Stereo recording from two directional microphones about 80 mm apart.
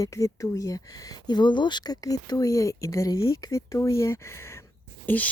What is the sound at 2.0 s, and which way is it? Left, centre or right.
Speech, left.